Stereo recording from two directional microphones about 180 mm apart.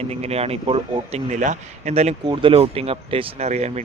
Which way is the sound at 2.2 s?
25° right (ahead or behind).